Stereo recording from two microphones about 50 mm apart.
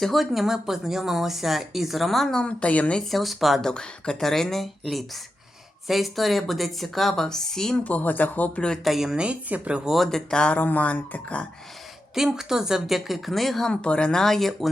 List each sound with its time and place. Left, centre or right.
0.0 s speech: centre
2.3 s a woman's voice: centre
3.1 s speech: centre
3.6 s speech: centre
7.9 s speech: left
8.8 s speech: centre
9.2 s speech: right
9.8 s speech: centre
10.1 s speech: centre
10.5 s speech: left
12.1 s speech: centre
13.7 s speech: centre